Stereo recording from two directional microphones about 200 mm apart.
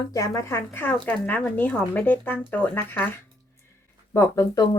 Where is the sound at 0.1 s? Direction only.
15° left (ahead or behind).